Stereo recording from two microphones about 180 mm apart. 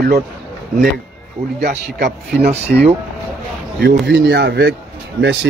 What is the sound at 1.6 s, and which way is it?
Speech, 60° right (ahead or behind).